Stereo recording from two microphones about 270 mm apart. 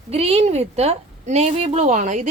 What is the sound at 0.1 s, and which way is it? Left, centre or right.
A woman's voice, right.